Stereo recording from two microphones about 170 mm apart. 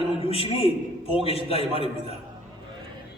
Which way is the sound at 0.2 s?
35° left (ahead or behind).